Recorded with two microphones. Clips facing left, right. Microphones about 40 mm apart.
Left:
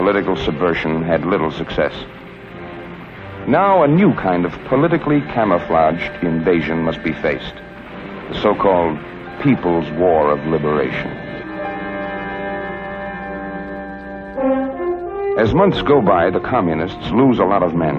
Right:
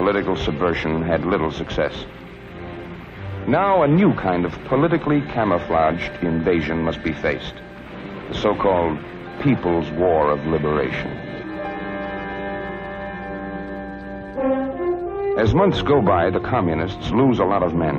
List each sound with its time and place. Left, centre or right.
0.0 s speech: centre
3.4 s speech: centre
8.6 s speech: centre
12.3 s music: centre
14.4 s french horn: centre
15.3 s speech: centre